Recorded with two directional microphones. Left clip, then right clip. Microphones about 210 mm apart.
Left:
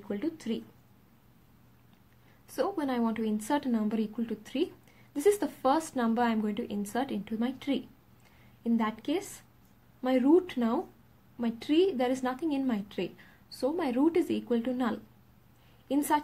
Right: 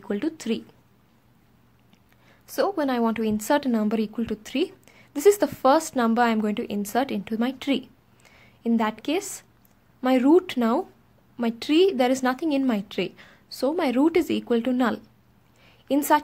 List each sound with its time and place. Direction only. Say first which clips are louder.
0.1 s a woman's voice: right 7 dB; 50° right (ahead or behind)
2.4 s a woman's voice: right 7 dB; 40° right (ahead or behind)